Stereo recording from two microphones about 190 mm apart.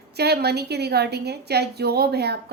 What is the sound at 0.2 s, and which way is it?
A woman's voice, 60° right (ahead or behind).